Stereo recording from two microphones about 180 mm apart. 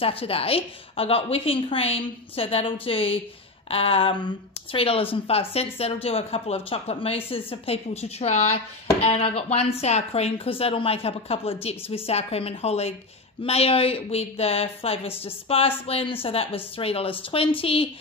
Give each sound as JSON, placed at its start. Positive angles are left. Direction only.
{"t": 0.0, "sound": "speech", "side_deg": 30}